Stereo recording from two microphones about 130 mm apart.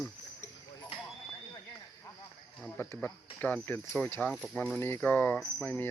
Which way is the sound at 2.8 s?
15° left (ahead or behind).